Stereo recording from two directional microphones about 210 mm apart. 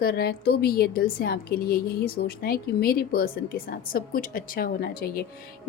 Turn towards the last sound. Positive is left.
turn(degrees=45)  # may be behind; listen again after turning